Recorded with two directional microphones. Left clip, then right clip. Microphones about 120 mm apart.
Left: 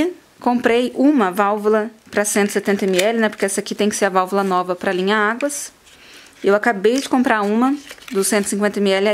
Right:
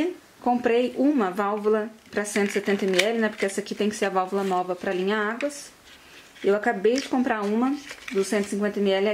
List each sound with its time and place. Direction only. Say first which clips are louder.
0.0 s speech: left 6 dB; 45° left (ahead or behind)
6.4 s speech: left 7 dB; 45° left (ahead or behind)